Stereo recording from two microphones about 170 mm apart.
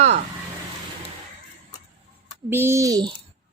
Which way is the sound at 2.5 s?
15° right (ahead or behind).